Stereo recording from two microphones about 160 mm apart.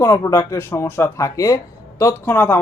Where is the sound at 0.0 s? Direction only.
20° left (ahead or behind).